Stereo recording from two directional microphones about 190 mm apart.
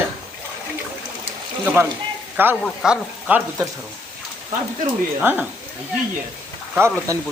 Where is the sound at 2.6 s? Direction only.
5° right (ahead or behind).